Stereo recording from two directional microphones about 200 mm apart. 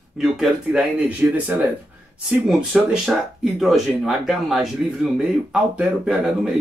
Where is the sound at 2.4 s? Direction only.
5° right (ahead or behind).